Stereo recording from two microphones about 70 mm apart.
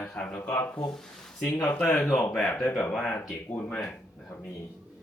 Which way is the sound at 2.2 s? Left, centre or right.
Centre.